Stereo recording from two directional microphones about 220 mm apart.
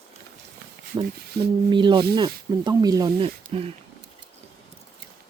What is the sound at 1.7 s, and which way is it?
Speech, 20° right (ahead or behind).